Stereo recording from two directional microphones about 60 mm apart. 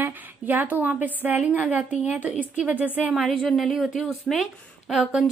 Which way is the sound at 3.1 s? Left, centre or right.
Centre.